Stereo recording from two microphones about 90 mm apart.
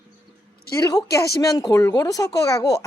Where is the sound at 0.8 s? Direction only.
40° left (ahead or behind).